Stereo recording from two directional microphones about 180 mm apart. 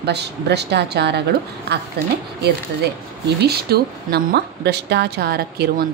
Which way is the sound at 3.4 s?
60° right (ahead or behind).